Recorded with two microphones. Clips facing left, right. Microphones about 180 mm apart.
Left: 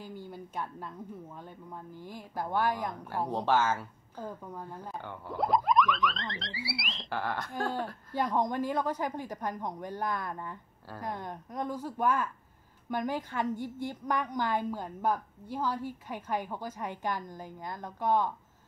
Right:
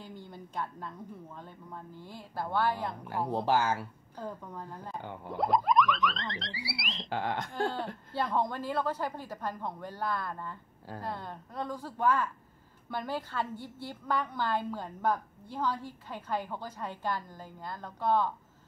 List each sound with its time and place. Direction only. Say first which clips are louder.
0.0 s a woman's voice: left 3 dB; 10° left (ahead or behind)
3.4 s speech: left 1 dB; 15° right (ahead or behind)
4.2 s a woman's voice: even; 10° left (ahead or behind)
5.0 s speech: even; 20° right (ahead or behind)
5.4 s speech: even; centre (ahead or behind)
7.1 s speech: right 1 dB; 20° right (ahead or behind)
8.1 s a woman's voice: left 2 dB; 15° left (ahead or behind)